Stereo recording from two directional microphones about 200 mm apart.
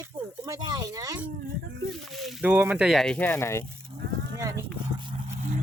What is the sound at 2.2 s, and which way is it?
Speech, 10° right (ahead or behind).